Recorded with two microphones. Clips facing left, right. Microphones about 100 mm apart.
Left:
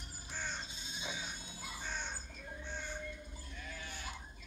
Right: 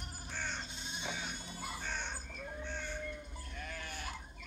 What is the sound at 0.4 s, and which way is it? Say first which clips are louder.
Goat: right 1 dB; 60° right (ahead or behind).